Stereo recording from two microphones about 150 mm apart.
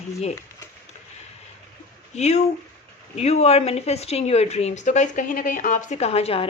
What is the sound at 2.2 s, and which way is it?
A woman's voice, 50° left (ahead or behind).